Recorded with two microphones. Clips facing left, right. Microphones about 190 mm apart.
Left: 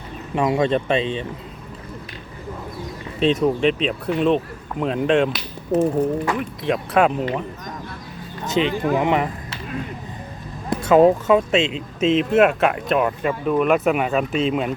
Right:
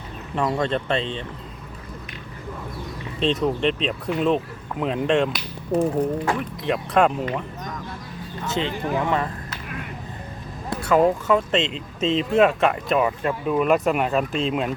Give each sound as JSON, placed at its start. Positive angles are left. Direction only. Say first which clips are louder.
{"t": 0.3, "sound": "speech", "louder": "left 4 dB", "side_deg": 15}
{"t": 3.2, "sound": "speech", "louder": "left 4 dB", "side_deg": 5}
{"t": 8.4, "sound": "speech", "louder": "left 6 dB", "side_deg": 15}
{"t": 10.7, "sound": "speech", "louder": "left 5 dB", "side_deg": 20}
{"t": 11.5, "sound": "speech", "louder": "left 3 dB", "side_deg": 5}